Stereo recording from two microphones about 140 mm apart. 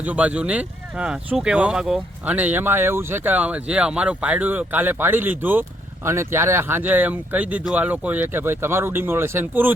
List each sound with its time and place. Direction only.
0.0 s speech: 10° right (ahead or behind)